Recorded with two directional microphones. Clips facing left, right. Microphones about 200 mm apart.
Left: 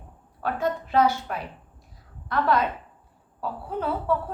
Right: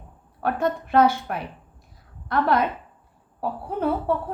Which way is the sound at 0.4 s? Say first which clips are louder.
Right 3 dB; 55° right (ahead or behind).